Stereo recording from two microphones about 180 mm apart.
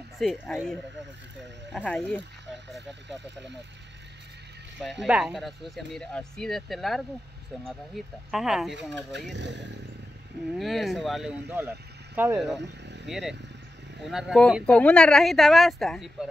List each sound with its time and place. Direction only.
0.2 s speech: centre (ahead or behind)
1.9 s speech: 5° left (ahead or behind)
5.0 s speech: 5° right (ahead or behind)
9.3 s speech: 75° right (ahead or behind)
10.6 s speech: centre (ahead or behind)
12.4 s speech: centre (ahead or behind)
12.6 s vehicle: 75° right (ahead or behind)
13.0 s speech: centre (ahead or behind)